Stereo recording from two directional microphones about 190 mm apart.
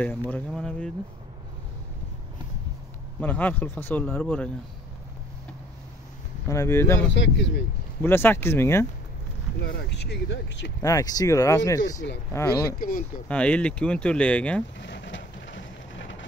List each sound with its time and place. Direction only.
0.0 s speech: 10° left (ahead or behind)
3.2 s speech: 10° left (ahead or behind)
6.4 s speech: 15° left (ahead or behind)
7.2 s speech: 70° left (ahead or behind)
8.0 s speech: 10° left (ahead or behind)
9.6 s speech: 60° left (ahead or behind)
10.8 s speech: 20° left (ahead or behind)
12.7 s speech: 50° left (ahead or behind)
13.3 s speech: 5° left (ahead or behind)
14.8 s a sound: 70° left (ahead or behind)